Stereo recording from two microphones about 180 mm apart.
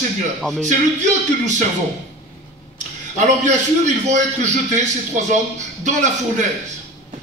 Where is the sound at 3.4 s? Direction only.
45° right (ahead or behind).